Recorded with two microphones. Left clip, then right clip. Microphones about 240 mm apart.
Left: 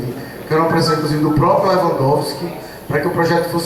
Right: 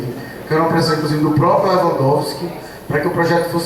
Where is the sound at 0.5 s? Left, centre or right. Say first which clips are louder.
Left 1 dB; centre.